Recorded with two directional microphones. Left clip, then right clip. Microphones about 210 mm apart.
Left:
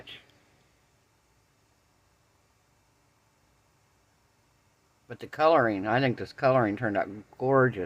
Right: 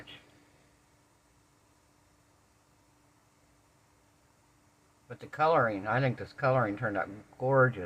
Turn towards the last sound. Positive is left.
turn(degrees=55)  # may be behind; listen again after turning